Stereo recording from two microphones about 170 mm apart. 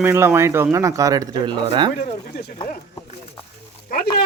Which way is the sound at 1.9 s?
60° left (ahead or behind).